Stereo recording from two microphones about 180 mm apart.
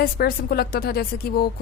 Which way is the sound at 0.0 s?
55° left (ahead or behind).